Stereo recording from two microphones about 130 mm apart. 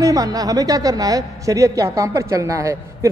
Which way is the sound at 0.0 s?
25° right (ahead or behind).